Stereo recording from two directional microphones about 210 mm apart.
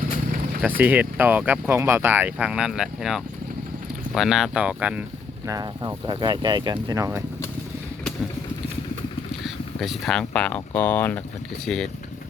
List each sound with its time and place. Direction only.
0.8 s speech: 5° right (ahead or behind)
9.4 s speech: centre (ahead or behind)